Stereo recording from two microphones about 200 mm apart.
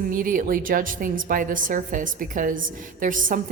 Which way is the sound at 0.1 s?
45° right (ahead or behind).